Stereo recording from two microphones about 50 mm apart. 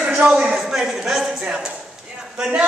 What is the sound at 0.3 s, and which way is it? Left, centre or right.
Speech, centre.